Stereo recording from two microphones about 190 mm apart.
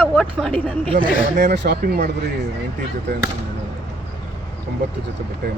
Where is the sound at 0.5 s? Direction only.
30° right (ahead or behind).